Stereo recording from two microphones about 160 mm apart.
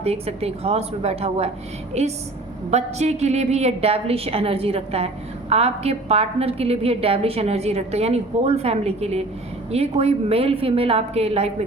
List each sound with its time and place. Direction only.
0.0 s a woman's voice: 40° right (ahead or behind)